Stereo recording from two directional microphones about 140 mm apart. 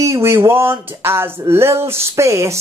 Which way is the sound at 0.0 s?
20° right (ahead or behind).